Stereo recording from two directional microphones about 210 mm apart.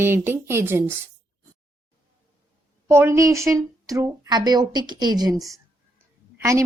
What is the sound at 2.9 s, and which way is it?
A woman's voice, 10° right (ahead or behind).